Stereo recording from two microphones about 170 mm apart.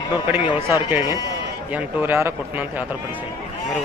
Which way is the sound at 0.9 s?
15° right (ahead or behind).